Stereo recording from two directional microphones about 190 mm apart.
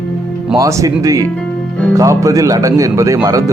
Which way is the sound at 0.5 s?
15° right (ahead or behind).